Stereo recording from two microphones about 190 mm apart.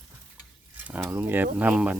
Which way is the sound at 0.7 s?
10° right (ahead or behind).